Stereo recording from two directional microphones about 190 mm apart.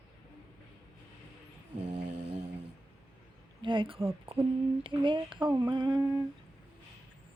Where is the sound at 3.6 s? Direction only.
25° right (ahead or behind).